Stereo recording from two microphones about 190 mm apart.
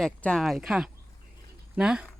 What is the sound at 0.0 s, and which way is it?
A woman's voice, 5° left (ahead or behind).